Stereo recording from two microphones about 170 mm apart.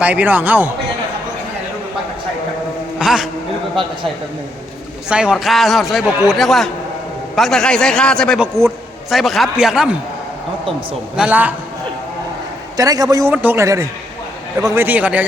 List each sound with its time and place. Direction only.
0.0 s speech: 10° right (ahead or behind)
3.0 s a man's voice: centre (ahead or behind)
5.0 s a man's voice: 5° right (ahead or behind)
8.4 s speech: 15° right (ahead or behind)
9.0 s a man's voice: centre (ahead or behind)
11.2 s speech: 10° right (ahead or behind)
12.7 s a man's voice: 20° right (ahead or behind)